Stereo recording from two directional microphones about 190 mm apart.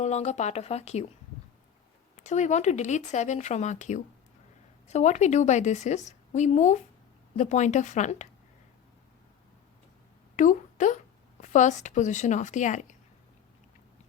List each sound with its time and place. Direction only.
0.0 s a woman's voice: 35° left (ahead or behind)
2.1 s a woman's voice: 40° left (ahead or behind)
10.3 s speech: 40° left (ahead or behind)